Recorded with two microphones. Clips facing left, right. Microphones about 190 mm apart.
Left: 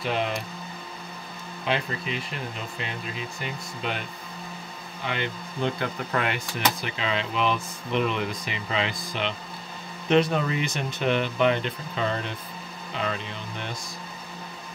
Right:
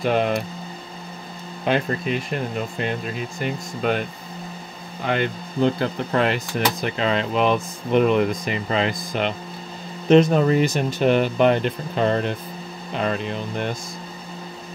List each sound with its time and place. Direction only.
0.0 s speech: 50° right (ahead or behind)
1.6 s speech: 50° right (ahead or behind)
5.0 s speech: 50° right (ahead or behind)
5.7 s speech: 35° right (ahead or behind)